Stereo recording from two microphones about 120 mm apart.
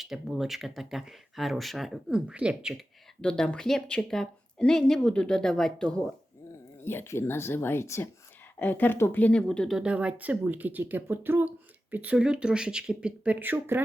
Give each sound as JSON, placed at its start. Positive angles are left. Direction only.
{"t": 0.0, "sound": "speech", "side_deg": 0}
{"t": 3.2, "sound": "speech", "side_deg": 5}
{"t": 6.8, "sound": "a woman's voice", "side_deg": 20}
{"t": 9.7, "sound": "speech", "side_deg": -10}